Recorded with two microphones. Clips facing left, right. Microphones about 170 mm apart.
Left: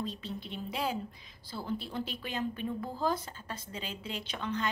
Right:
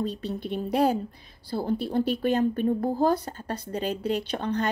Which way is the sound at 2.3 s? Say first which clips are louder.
Right 7 dB; 45° right (ahead or behind).